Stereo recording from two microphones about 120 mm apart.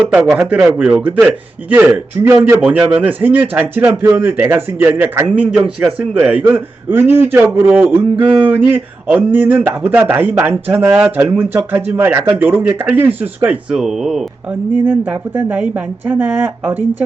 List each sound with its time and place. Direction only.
0.3 s a man's voice: 5° right (ahead or behind)
11.3 s a man's voice: 15° right (ahead or behind)
14.8 s a man's voice: 15° right (ahead or behind)